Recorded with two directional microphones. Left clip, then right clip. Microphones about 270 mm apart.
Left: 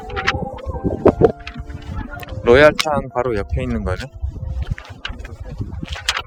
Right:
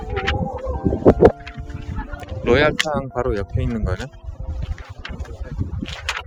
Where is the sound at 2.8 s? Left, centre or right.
Centre.